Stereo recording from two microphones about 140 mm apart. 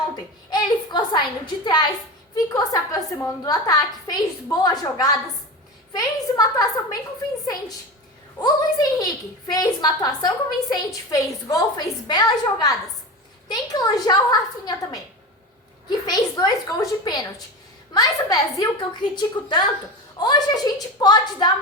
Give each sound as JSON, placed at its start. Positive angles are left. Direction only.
{"t": 0.5, "sound": "a woman's voice", "side_deg": 30}
{"t": 8.4, "sound": "a woman's voice", "side_deg": 30}
{"t": 17.9, "sound": "a woman's voice", "side_deg": 25}